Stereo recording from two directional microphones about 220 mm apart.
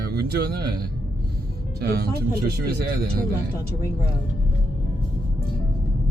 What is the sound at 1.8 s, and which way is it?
Speech, 45° right (ahead or behind).